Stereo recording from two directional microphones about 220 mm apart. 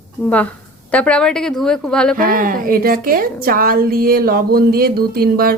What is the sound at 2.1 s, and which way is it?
A woman's voice, 40° right (ahead or behind).